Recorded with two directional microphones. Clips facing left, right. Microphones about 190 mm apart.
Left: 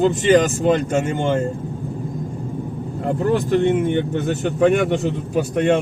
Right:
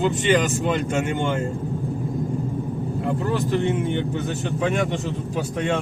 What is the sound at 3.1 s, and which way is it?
Speech, 55° left (ahead or behind).